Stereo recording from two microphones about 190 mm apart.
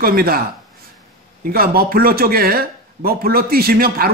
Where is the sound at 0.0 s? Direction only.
50° right (ahead or behind).